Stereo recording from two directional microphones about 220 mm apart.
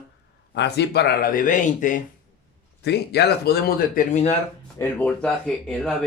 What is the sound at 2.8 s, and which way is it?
Speech, 50° left (ahead or behind).